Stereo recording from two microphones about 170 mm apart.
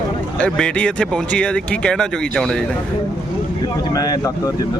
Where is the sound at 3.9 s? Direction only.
20° left (ahead or behind).